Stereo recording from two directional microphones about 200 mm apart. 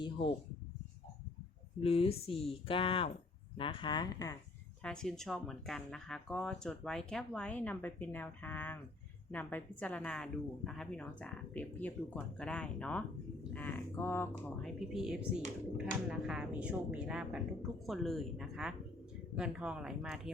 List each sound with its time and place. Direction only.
1.8 s speech: 30° left (ahead or behind)
4.8 s speech: 5° left (ahead or behind)
14.6 s speech: centre (ahead or behind)